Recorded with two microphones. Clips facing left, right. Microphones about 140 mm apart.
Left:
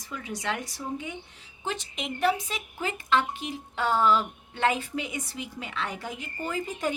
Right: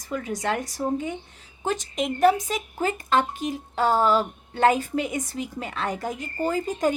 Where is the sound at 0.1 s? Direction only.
45° right (ahead or behind).